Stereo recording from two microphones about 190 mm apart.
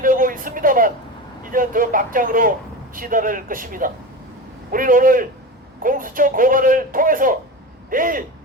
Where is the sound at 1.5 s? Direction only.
45° right (ahead or behind).